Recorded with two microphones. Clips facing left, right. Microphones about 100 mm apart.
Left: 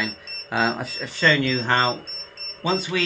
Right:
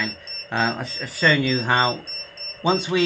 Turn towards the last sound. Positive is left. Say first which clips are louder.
# right 3 dB
turn(degrees=-20)  # may be behind; listen again after turning